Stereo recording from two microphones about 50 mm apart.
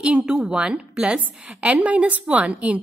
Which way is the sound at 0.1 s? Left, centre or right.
Centre.